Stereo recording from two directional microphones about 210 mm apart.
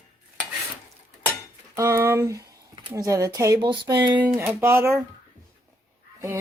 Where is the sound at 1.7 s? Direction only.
10° right (ahead or behind).